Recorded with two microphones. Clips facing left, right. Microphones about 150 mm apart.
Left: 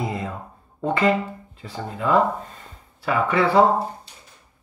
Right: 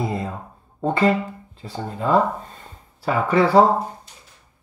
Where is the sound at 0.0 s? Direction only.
35° right (ahead or behind).